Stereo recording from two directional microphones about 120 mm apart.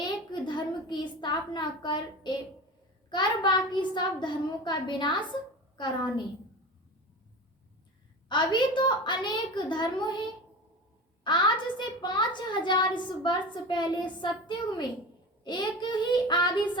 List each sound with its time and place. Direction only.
0.0 s a sound: 40° left (ahead or behind)
3.1 s a woman's voice: 40° left (ahead or behind)
8.3 s a woman's voice: 40° left (ahead or behind)
11.2 s a woman's voice: 40° left (ahead or behind)